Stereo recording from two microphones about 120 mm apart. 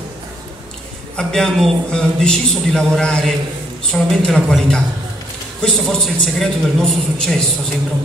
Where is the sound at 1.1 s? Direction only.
5° left (ahead or behind).